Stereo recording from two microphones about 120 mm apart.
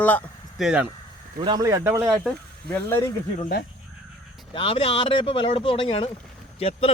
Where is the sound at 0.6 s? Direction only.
10° right (ahead or behind).